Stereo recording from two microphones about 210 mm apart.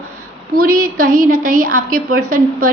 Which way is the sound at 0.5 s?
40° right (ahead or behind).